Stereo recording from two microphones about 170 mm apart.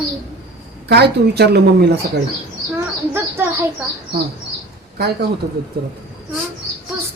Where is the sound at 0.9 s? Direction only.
75° right (ahead or behind).